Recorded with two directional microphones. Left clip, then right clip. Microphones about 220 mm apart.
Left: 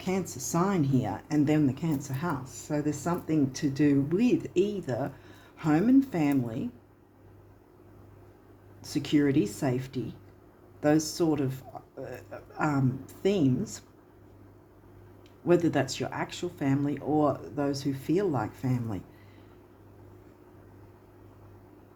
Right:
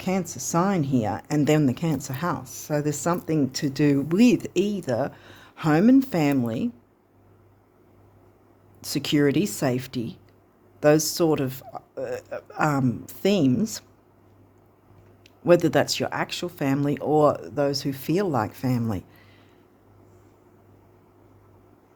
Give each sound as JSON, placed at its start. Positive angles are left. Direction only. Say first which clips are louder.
{"t": 0.0, "sound": "speech", "louder": "right 4 dB", "side_deg": -50}
{"t": 8.8, "sound": "speech", "louder": "right 5 dB", "side_deg": -55}
{"t": 15.4, "sound": "speech", "louder": "right 7 dB", "side_deg": -50}